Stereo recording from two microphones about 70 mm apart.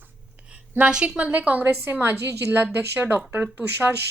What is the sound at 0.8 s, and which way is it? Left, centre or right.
A woman's voice, centre.